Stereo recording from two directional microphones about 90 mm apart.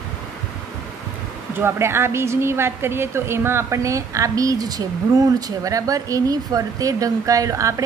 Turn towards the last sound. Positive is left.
turn(degrees=-35)  # may be behind; listen again after turning